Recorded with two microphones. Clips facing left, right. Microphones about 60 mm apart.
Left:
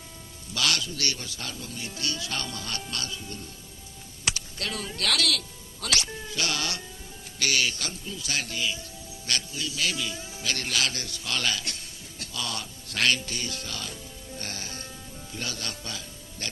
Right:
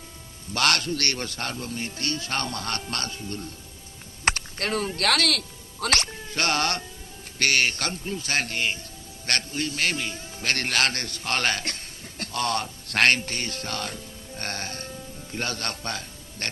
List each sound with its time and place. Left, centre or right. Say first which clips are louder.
0.5 s a man's voice: right 5 dB; right